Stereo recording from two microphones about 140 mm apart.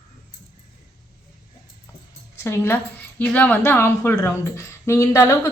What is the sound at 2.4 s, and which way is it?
A woman's voice, 15° left (ahead or behind).